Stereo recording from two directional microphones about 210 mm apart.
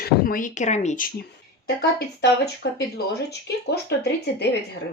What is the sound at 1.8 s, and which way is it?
Speech, 50° left (ahead or behind).